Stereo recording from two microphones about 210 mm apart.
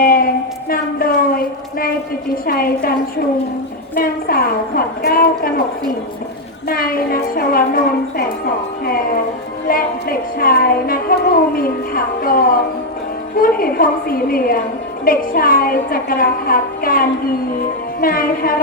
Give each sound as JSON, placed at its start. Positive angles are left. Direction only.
{"t": 0.0, "sound": "a sound", "side_deg": 45}
{"t": 2.5, "sound": "a woman's voice", "side_deg": 45}
{"t": 3.9, "sound": "a woman's voice", "side_deg": 45}
{"t": 6.7, "sound": "a woman's voice", "side_deg": 45}
{"t": 9.6, "sound": "a woman's voice", "side_deg": 45}